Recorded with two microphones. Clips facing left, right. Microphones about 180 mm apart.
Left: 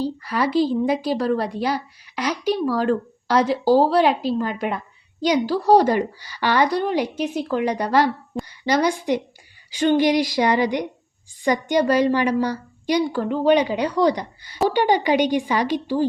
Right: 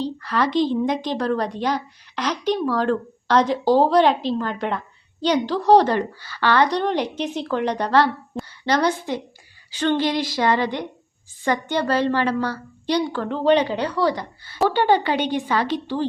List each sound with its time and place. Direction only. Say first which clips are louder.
0.0 s a woman's voice: even; 10° left (ahead or behind)